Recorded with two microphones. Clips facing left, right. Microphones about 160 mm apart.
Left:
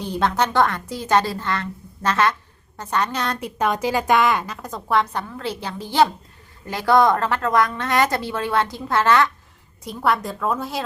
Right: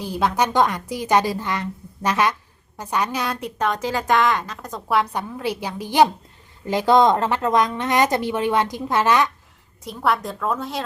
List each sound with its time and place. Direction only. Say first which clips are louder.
0.0 s a woman's voice: even; 5° right (ahead or behind)
3.4 s a woman's voice: left 2 dB; 5° left (ahead or behind); by 9.3 s 15° right (ahead or behind)
9.8 s a woman's voice: even; centre (ahead or behind)